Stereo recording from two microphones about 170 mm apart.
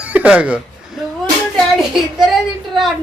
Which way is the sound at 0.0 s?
10° right (ahead or behind).